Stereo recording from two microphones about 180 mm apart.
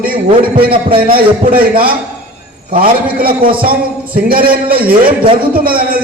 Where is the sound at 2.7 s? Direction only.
30° right (ahead or behind).